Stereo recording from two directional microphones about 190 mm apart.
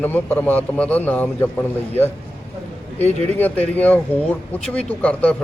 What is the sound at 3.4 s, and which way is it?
A man's voice, 10° left (ahead or behind).